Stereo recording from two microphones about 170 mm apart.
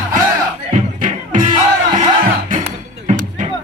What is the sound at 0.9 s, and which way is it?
Music, 50° right (ahead or behind).